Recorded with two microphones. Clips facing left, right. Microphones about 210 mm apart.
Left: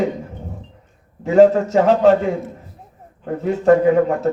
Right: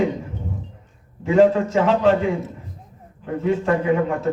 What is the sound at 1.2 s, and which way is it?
A man's voice, 40° left (ahead or behind).